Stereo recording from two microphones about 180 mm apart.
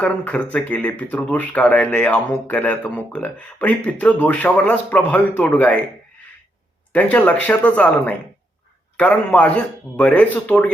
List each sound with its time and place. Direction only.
0.0 s speech: 10° left (ahead or behind)
6.9 s speech: 10° left (ahead or behind)